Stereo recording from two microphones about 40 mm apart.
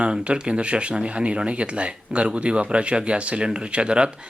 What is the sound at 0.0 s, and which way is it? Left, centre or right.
Speech, right.